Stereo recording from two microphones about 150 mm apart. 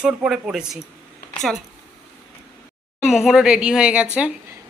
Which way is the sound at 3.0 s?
Centre (ahead or behind).